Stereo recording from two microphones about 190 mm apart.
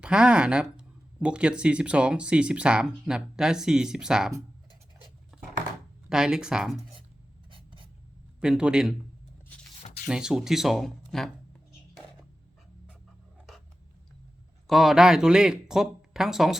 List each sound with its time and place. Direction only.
0.0 s speech: 5° right (ahead or behind)
5.3 s a sound: centre (ahead or behind)
6.1 s speech: 5° right (ahead or behind)
7.5 s writing: 25° right (ahead or behind)
8.4 s speech: 5° right (ahead or behind)
10.1 s speech: 5° right (ahead or behind)
14.7 s speech: centre (ahead or behind)